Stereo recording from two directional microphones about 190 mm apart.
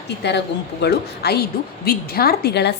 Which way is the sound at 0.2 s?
65° left (ahead or behind).